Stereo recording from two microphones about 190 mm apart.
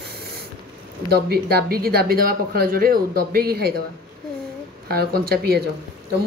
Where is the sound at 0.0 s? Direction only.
55° right (ahead or behind).